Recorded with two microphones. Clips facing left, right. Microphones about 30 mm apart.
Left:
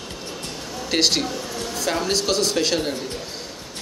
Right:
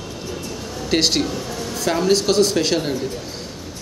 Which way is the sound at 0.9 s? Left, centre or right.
Centre.